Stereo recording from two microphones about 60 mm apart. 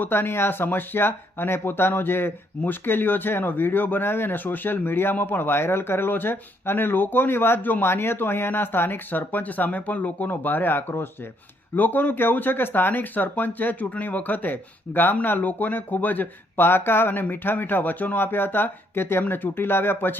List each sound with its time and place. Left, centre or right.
0.0 s speech: left